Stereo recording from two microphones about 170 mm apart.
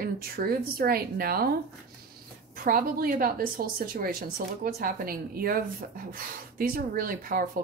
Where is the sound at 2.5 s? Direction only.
55° right (ahead or behind).